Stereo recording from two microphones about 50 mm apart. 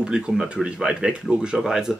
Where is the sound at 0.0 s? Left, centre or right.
Centre.